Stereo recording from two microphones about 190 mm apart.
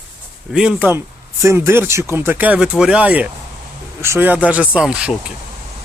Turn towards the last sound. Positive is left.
turn(degrees=-5)  # may be behind; listen again after turning